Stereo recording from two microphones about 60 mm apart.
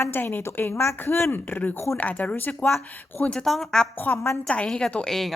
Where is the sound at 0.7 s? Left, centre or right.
Left.